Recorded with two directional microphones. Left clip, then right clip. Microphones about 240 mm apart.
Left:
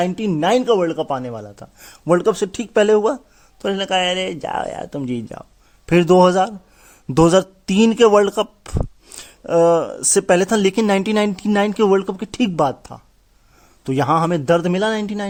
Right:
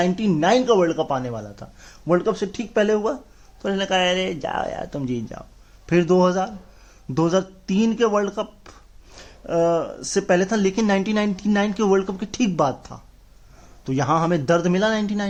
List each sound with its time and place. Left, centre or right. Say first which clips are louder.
0.0 s a man's voice: left 1 dB; left